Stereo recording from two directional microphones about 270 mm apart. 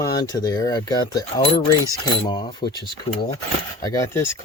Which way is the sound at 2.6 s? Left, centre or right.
Centre.